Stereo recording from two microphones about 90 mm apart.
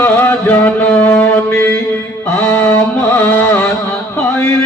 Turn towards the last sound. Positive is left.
turn(degrees=20)  # may be behind; listen again after turning